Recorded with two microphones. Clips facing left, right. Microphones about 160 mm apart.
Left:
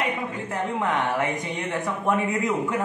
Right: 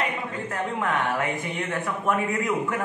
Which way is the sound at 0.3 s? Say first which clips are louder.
Left 1 dB; 15° left (ahead or behind).